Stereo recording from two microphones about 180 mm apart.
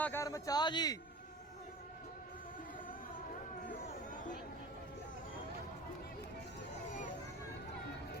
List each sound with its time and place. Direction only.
0.0 s a man's voice: 15° left (ahead or behind)